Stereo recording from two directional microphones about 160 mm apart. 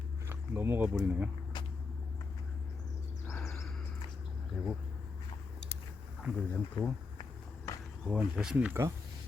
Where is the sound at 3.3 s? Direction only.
Centre (ahead or behind).